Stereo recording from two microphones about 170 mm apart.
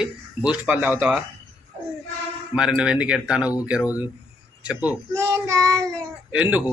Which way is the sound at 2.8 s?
5° right (ahead or behind).